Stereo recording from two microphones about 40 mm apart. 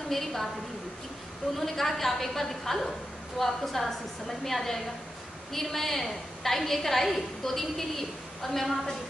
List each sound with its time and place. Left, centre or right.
0.1 s a woman's voice: centre
1.6 s a woman's voice: centre